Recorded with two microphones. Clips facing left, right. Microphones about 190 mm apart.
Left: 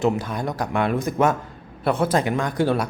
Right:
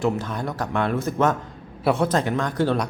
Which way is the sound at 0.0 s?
10° left (ahead or behind).